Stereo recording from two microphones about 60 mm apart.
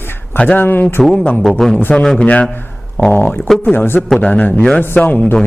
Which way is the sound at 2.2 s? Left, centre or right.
Left.